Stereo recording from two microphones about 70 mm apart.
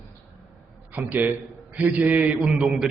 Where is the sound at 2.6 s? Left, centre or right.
Centre.